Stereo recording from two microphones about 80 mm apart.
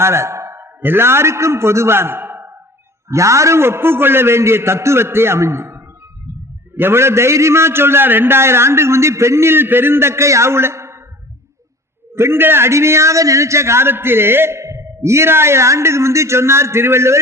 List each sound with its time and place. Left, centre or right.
0.0 s a man's voice: right
3.1 s a man's voice: right
12.1 s a man's voice: right